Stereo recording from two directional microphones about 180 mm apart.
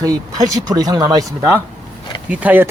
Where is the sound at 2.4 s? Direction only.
10° right (ahead or behind).